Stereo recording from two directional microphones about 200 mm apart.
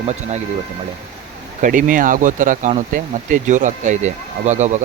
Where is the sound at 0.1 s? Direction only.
35° right (ahead or behind).